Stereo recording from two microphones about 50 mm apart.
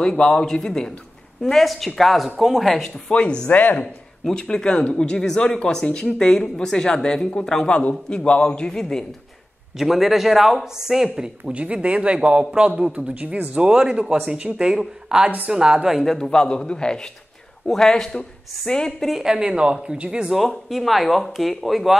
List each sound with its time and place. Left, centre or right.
0.0 s speech: centre
3.1 s speech: centre
3.4 s speech: left
3.8 s a man's voice: centre
9.8 s speech: centre
11.5 s speech: right
12.9 s speech: right
13.6 s speech: centre
16.1 s speech: centre
18.9 s speech: centre
19.2 s speech: centre
20.2 s speech: centre